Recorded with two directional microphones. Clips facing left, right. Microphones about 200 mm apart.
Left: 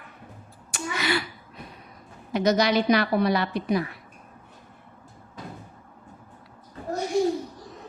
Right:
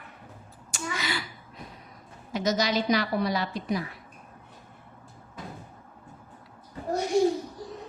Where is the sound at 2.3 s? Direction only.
60° left (ahead or behind).